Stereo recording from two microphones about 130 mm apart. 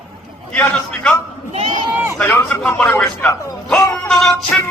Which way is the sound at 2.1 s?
15° left (ahead or behind).